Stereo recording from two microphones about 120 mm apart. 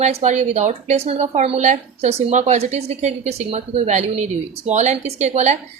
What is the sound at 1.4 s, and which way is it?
A woman's voice, 75° right (ahead or behind).